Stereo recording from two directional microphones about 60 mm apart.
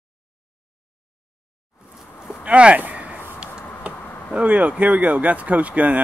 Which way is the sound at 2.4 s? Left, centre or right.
Right.